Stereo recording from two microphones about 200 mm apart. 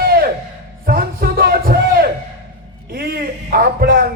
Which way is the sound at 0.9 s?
50° right (ahead or behind).